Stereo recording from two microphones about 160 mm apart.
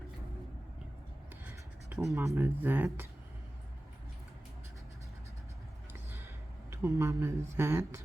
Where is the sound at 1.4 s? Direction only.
15° right (ahead or behind).